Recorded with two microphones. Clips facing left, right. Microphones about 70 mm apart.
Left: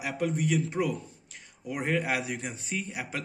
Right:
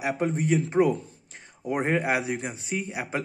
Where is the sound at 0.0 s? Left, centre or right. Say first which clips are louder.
Right 3 dB; right.